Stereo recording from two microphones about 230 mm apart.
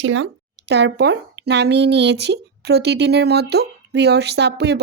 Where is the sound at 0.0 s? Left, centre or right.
Right.